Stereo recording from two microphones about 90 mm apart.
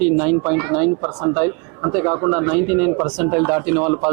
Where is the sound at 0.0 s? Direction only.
15° right (ahead or behind).